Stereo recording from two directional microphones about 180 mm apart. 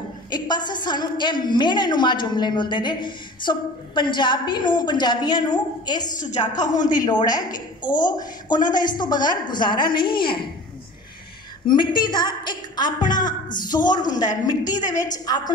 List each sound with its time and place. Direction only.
0.3 s a woman's voice: 25° left (ahead or behind)
6.1 s a woman's voice: 45° left (ahead or behind)
6.6 s a woman's voice: 20° left (ahead or behind)
11.6 s a woman's voice: 25° left (ahead or behind)